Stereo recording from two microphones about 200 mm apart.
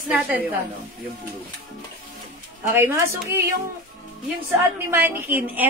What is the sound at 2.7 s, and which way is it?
Speech, 10° right (ahead or behind).